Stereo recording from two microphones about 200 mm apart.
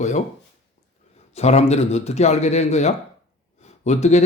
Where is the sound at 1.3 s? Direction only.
35° left (ahead or behind).